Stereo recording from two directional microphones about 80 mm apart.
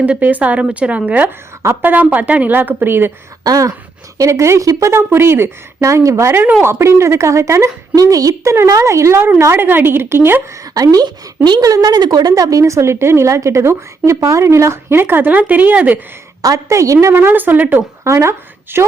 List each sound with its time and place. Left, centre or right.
0.0 s a woman's voice: centre
3.4 s a sound: right
4.2 s a woman's voice: right
10.5 s a woman's voice: right; by 16.0 s centre
16.4 s a woman's voice: right
18.0 s speech: right